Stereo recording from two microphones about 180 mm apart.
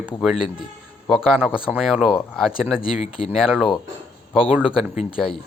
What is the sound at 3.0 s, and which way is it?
Speech, 35° left (ahead or behind).